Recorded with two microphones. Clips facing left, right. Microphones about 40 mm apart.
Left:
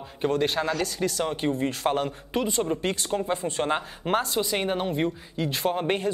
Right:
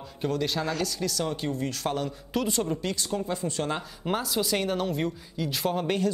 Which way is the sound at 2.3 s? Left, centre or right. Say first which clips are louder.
Left 2 dB; left.